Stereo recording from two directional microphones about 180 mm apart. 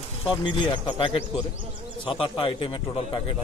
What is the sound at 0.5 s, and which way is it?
A man's voice, 30° left (ahead or behind).